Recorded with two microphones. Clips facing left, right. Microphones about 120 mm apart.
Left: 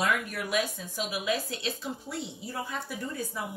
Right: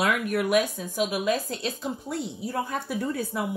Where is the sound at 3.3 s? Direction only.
75° right (ahead or behind).